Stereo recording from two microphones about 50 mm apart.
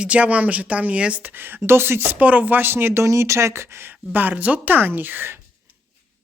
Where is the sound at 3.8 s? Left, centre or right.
Right.